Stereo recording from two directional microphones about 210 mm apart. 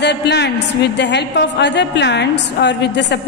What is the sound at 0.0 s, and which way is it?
A man's voice, 50° left (ahead or behind).